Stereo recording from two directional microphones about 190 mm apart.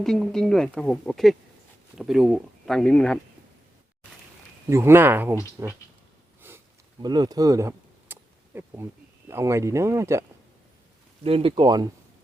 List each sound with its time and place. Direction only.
0.0 s speech: centre (ahead or behind)
4.7 s speech: 15° right (ahead or behind)
6.4 s a sound: 10° right (ahead or behind)
9.3 s speech: 15° right (ahead or behind)
11.2 s speech: 30° right (ahead or behind)